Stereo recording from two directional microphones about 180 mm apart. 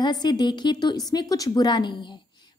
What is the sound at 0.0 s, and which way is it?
A woman's voice, 25° left (ahead or behind).